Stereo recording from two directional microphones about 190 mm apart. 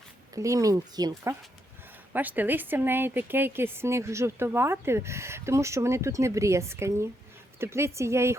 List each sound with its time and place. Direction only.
0.3 s a woman's voice: 15° right (ahead or behind)